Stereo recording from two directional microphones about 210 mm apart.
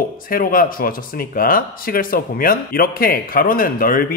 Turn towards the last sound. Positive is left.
turn(degrees=45)  # may be behind; listen again after turning